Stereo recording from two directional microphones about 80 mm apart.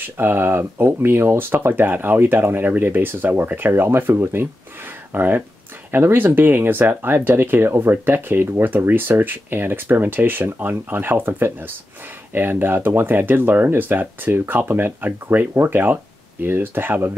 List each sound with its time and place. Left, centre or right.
0.2 s speech: right